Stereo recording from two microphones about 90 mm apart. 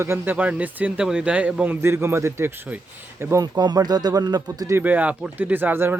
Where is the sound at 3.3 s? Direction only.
50° right (ahead or behind).